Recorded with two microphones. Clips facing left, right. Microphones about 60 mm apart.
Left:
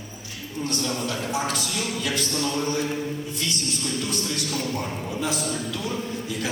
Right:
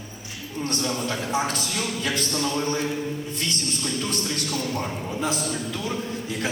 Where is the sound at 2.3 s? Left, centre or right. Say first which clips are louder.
Even; centre.